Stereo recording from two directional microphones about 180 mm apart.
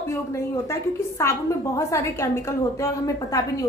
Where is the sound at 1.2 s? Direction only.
15° left (ahead or behind).